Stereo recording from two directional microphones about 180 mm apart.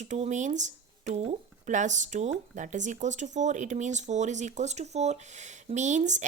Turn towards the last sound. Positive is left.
turn(degrees=-40)  # may be behind; listen again after turning